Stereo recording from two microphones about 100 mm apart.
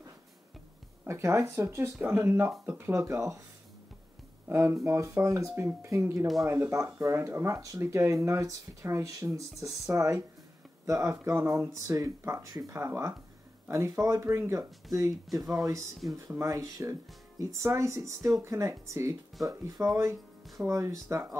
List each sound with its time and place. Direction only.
1.0 s speech: 25° right (ahead or behind)
4.5 s speech: 25° right (ahead or behind)